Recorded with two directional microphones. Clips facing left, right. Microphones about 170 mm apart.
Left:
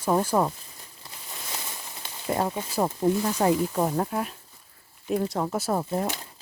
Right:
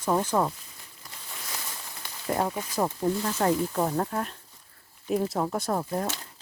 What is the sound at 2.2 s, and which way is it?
Speech, 5° left (ahead or behind).